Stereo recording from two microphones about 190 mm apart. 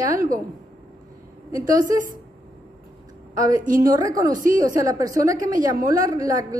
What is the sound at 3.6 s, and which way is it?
Speech, 45° right (ahead or behind).